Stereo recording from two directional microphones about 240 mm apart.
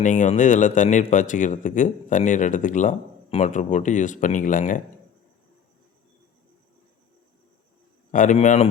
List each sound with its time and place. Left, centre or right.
0.0 s speech: left
8.1 s speech: left